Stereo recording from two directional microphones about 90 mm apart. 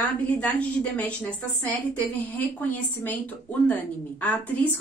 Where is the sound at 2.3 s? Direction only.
20° left (ahead or behind).